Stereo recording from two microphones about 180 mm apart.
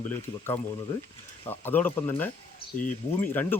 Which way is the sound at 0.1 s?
10° left (ahead or behind).